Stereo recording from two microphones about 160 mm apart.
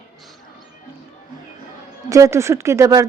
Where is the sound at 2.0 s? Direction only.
20° right (ahead or behind).